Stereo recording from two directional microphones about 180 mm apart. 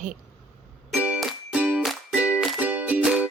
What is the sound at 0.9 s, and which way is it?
Music, 5° right (ahead or behind).